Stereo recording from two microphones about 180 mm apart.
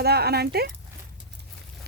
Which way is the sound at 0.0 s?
60° right (ahead or behind).